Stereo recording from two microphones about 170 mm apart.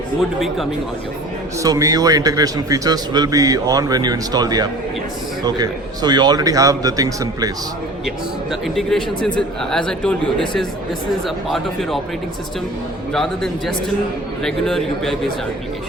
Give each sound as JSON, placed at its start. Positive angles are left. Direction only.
{"t": 0.3, "sound": "a man's voice", "side_deg": 0}
{"t": 1.5, "sound": "a man's voice", "side_deg": -20}
{"t": 8.0, "sound": "a man's voice", "side_deg": 0}
{"t": 13.1, "sound": "a man's voice", "side_deg": 0}